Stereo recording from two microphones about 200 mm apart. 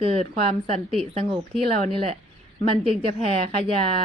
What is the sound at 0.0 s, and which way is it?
A woman's voice, 30° right (ahead or behind).